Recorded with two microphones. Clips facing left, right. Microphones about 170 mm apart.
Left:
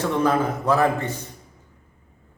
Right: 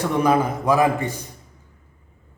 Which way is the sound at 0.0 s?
15° right (ahead or behind).